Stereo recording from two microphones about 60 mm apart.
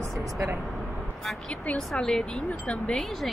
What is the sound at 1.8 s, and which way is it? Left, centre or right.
Speech, centre.